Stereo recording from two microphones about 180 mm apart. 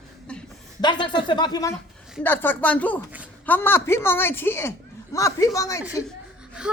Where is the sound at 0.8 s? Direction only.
25° left (ahead or behind).